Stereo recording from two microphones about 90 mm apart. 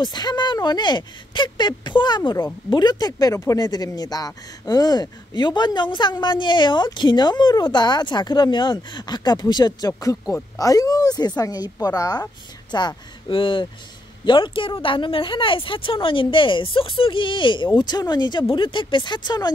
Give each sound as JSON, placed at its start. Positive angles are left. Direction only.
{"t": 0.0, "sound": "speech", "side_deg": 50}
{"t": 12.7, "sound": "speech", "side_deg": 65}
{"t": 17.7, "sound": "speech", "side_deg": 50}
{"t": 18.5, "sound": "speech", "side_deg": 65}